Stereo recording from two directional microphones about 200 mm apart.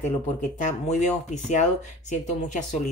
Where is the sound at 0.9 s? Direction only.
35° left (ahead or behind).